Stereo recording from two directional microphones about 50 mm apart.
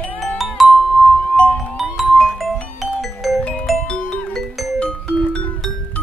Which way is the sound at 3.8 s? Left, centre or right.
Left.